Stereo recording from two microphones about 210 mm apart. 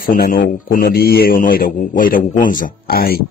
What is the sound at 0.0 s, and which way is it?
A man's voice, 40° left (ahead or behind).